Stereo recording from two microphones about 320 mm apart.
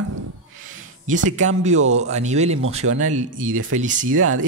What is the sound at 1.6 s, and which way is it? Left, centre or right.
Speech, right.